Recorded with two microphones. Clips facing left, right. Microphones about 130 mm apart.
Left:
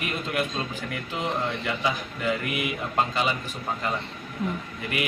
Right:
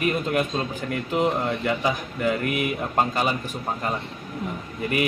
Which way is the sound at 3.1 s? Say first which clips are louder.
Right 2 dB; 45° right (ahead or behind).